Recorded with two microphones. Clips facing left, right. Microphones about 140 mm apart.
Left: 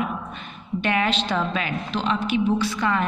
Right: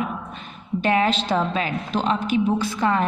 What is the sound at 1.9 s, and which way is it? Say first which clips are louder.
A man's voice: right 2 dB; 45° right (ahead or behind).